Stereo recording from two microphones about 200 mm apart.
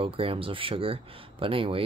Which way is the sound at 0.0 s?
25° right (ahead or behind).